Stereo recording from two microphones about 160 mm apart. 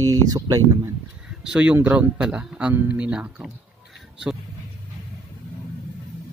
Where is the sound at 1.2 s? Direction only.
5° right (ahead or behind).